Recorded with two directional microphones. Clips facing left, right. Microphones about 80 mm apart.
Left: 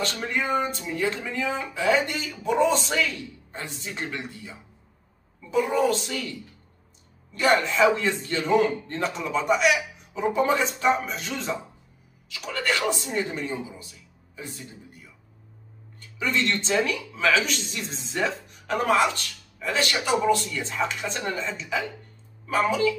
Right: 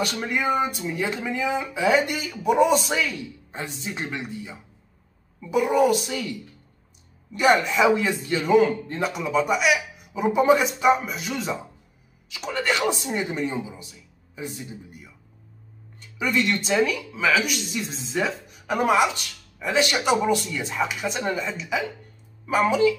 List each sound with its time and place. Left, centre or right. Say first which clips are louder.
0.0 s speech: right 3 dB; centre
7.3 s speech: right 2 dB; centre
12.3 s a man's voice: right 2 dB; centre